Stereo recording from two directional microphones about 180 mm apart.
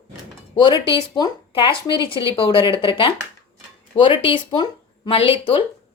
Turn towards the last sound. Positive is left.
turn(degrees=30)  # may be behind; listen again after turning